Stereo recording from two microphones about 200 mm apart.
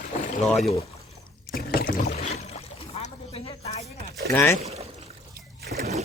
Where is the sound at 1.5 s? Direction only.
50° left (ahead or behind).